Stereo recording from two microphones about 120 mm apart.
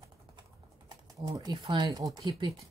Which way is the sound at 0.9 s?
30° right (ahead or behind).